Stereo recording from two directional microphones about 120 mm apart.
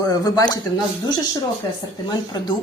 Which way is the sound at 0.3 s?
35° left (ahead or behind).